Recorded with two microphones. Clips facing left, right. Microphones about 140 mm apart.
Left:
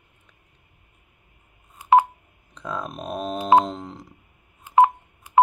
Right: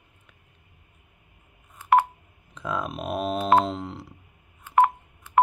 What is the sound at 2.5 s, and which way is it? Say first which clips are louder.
Speech: right 1 dB; 5° right (ahead or behind).